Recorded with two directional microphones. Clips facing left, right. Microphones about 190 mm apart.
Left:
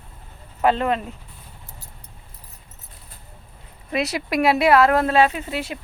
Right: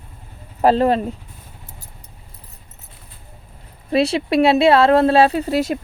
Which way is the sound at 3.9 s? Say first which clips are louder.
Right 7 dB; 30° right (ahead or behind).